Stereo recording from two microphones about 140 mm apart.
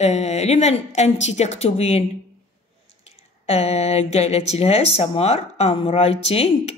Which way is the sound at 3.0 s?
45° left (ahead or behind).